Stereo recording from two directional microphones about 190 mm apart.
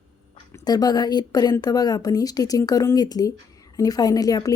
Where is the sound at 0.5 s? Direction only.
20° left (ahead or behind).